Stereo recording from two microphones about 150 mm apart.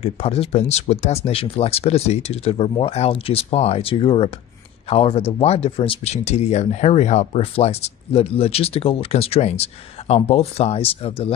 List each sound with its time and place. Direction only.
0.0 s speech: 40° left (ahead or behind)